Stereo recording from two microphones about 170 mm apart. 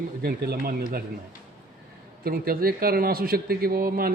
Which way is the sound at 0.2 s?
65° right (ahead or behind).